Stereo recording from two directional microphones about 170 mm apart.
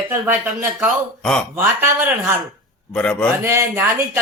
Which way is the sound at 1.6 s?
10° right (ahead or behind).